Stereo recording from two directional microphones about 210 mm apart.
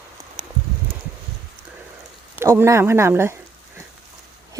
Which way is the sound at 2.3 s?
15° right (ahead or behind).